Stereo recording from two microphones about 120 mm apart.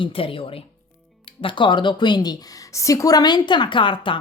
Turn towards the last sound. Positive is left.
turn(degrees=45)  # may be behind; listen again after turning